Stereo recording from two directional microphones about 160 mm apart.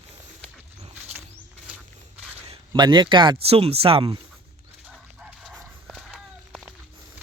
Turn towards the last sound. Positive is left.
turn(degrees=-5)  # may be behind; listen again after turning